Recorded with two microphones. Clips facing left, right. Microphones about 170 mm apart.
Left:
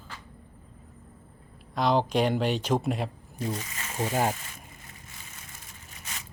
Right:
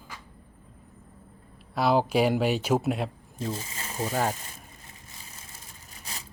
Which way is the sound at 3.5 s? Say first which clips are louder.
Even; 30° right (ahead or behind).